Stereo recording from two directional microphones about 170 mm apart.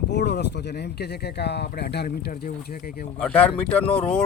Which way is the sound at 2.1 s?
60° left (ahead or behind).